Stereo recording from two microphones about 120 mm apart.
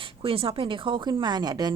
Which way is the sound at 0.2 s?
50° right (ahead or behind).